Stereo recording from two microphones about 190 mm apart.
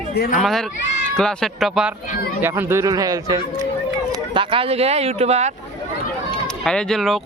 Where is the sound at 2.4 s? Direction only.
10° right (ahead or behind); by 5.5 s 35° right (ahead or behind).